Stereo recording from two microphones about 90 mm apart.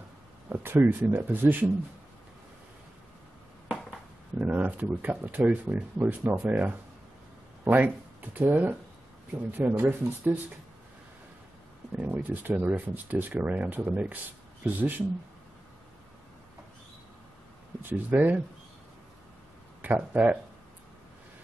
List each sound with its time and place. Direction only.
0.5 s speech: 25° right (ahead or behind)
4.4 s speech: 15° right (ahead or behind)
11.9 s speech: 20° right (ahead or behind)
17.8 s speech: 20° right (ahead or behind)
19.8 s speech: 15° right (ahead or behind)